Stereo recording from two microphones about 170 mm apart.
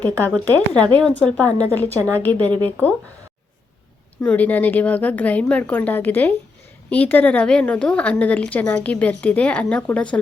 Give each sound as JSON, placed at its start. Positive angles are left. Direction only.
{"t": 0.3, "sound": "a woman's voice", "side_deg": 5}
{"t": 4.2, "sound": "a woman's voice", "side_deg": 10}